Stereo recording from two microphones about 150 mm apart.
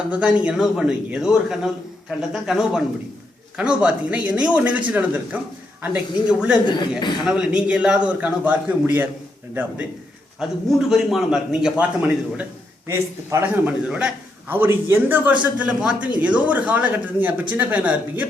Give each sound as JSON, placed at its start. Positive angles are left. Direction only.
{"t": 0.1, "sound": "a man's voice", "side_deg": -5}
{"t": 10.7, "sound": "a man's voice", "side_deg": -5}